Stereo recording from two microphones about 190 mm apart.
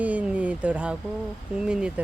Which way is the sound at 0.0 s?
5° right (ahead or behind).